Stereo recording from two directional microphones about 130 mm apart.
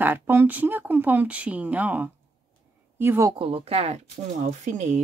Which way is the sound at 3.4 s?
45° right (ahead or behind).